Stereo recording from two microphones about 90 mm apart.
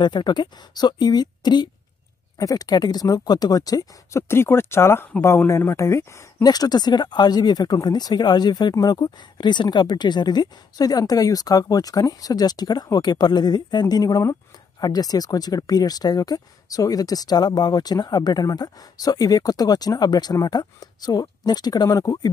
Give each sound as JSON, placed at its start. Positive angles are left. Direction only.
{"t": 0.0, "sound": "speech", "side_deg": 55}
{"t": 2.3, "sound": "speech", "side_deg": 40}
{"t": 4.3, "sound": "speech", "side_deg": 30}
{"t": 6.4, "sound": "speech", "side_deg": 45}